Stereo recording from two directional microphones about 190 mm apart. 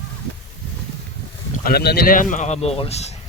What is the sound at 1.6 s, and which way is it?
Speech, 55° left (ahead or behind).